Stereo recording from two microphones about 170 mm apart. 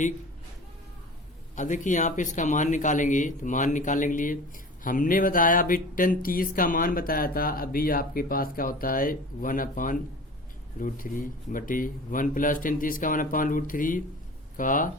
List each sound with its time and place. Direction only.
1.5 s speech: 45° left (ahead or behind)